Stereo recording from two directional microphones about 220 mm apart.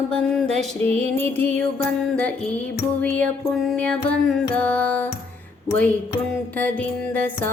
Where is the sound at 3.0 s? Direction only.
5° left (ahead or behind).